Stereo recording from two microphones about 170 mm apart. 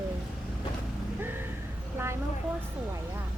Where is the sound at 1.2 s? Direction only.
15° right (ahead or behind).